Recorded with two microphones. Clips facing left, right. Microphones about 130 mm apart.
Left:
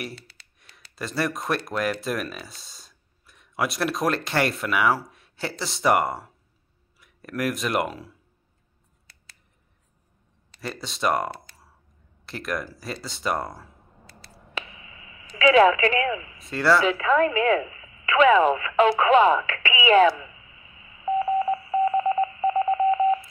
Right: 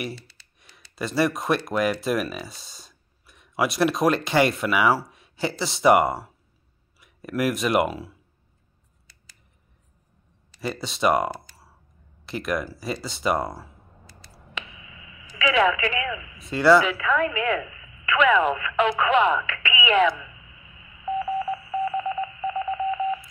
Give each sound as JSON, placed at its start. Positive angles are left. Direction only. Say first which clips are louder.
{"t": 0.6, "sound": "speech", "louder": "right 3 dB", "side_deg": 0}
{"t": 10.6, "sound": "speech", "louder": "right 3 dB", "side_deg": 0}
{"t": 14.5, "sound": "telephone", "louder": "left 2 dB", "side_deg": 35}
{"t": 16.4, "sound": "speech", "louder": "right 4 dB", "side_deg": 0}
{"t": 17.0, "sound": "speech", "louder": "left 3 dB", "side_deg": 35}
{"t": 20.8, "sound": "telephone dialing", "louder": "left 3 dB", "side_deg": 30}
{"t": 21.5, "sound": "telephone dialing", "louder": "left 4 dB", "side_deg": 45}